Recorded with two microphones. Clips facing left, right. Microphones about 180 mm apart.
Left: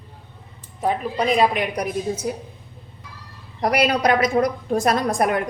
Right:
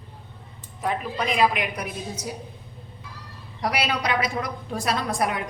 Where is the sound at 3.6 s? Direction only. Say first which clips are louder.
Left 7 dB; 45° left (ahead or behind).